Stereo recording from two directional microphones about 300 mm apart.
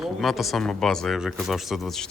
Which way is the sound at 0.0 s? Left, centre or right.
Centre.